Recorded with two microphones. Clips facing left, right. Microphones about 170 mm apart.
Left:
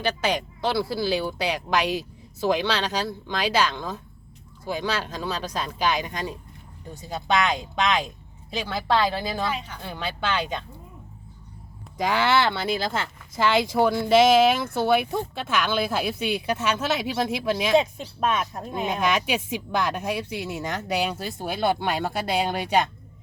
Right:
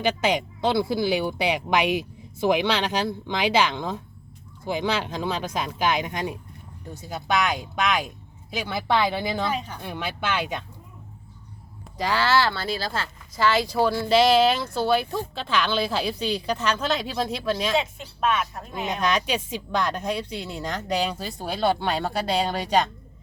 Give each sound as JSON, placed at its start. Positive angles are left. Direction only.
{"t": 0.0, "sound": "speech", "side_deg": -20}
{"t": 6.9, "sound": "speech", "side_deg": -5}
{"t": 9.5, "sound": "speech", "side_deg": -45}
{"t": 9.8, "sound": "speech", "side_deg": -10}
{"t": 11.9, "sound": "speech", "side_deg": 20}
{"t": 17.7, "sound": "speech", "side_deg": 40}
{"t": 18.9, "sound": "speech", "side_deg": 10}